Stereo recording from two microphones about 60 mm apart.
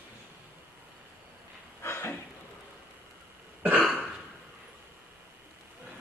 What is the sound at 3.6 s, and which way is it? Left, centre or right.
Cough, right.